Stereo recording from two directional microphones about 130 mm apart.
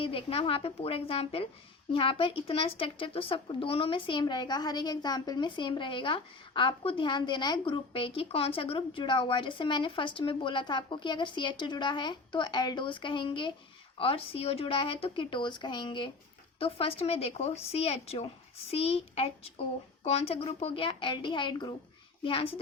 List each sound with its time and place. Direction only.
0.0 s a woman's voice: 45° left (ahead or behind)